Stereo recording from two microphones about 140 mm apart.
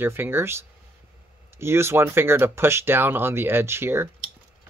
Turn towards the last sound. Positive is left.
turn(degrees=-15)  # may be behind; listen again after turning